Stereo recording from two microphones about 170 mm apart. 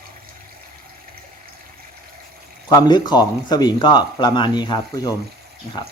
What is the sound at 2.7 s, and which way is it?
Speech, 25° left (ahead or behind).